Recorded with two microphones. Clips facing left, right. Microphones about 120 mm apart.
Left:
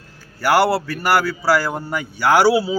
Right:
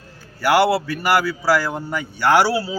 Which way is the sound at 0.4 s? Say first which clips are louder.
Even; centre (ahead or behind).